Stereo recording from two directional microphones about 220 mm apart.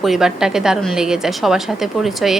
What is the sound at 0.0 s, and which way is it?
A woman's voice, centre (ahead or behind).